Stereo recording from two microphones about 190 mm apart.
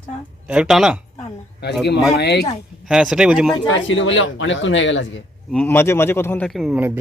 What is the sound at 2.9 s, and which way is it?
Speech, centre (ahead or behind).